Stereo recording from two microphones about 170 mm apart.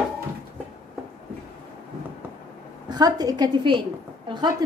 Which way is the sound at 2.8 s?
25° right (ahead or behind).